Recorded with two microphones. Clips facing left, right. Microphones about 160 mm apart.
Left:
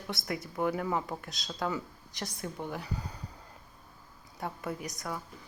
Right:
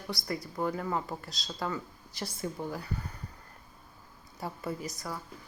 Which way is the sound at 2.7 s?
10° left (ahead or behind).